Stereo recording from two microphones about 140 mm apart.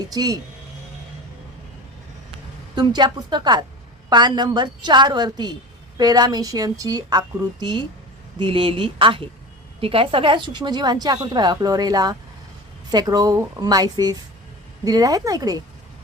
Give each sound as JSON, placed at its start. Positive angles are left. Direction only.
{"t": 0.0, "sound": "a woman's voice", "side_deg": -25}
{"t": 2.7, "sound": "a woman's voice", "side_deg": -30}